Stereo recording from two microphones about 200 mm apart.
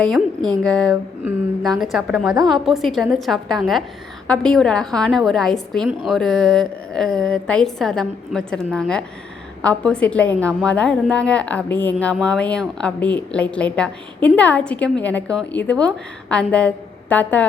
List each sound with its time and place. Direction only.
0.0 s a woman's voice: 5° left (ahead or behind)